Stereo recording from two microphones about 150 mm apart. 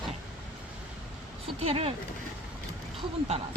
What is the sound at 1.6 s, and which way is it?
Speech, 40° right (ahead or behind).